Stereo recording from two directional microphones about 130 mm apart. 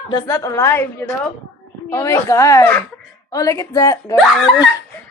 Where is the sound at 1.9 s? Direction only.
25° left (ahead or behind).